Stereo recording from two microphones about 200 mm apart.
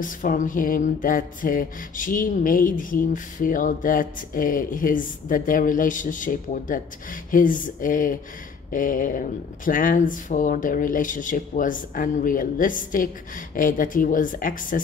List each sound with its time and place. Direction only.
0.0 s music: 40° left (ahead or behind)